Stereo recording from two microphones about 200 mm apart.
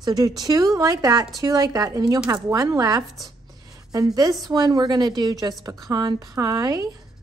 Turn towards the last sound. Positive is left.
turn(degrees=-15)  # may be behind; listen again after turning